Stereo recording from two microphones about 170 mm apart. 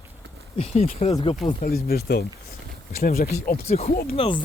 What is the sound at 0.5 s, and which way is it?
Speech, 35° left (ahead or behind).